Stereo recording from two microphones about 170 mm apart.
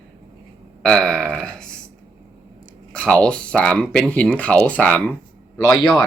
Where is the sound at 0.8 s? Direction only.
5° left (ahead or behind).